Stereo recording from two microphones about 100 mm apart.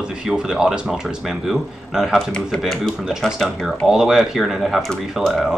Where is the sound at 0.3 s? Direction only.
5° right (ahead or behind).